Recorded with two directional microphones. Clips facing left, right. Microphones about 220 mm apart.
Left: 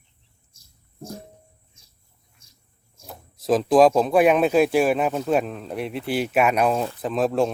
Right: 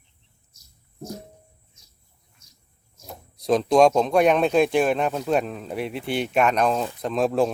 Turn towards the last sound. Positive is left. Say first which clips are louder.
# even
turn(degrees=0)  # may be behind; listen again after turning